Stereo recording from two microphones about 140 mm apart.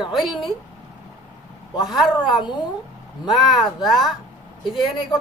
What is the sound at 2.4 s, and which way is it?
Speech, 35° left (ahead or behind).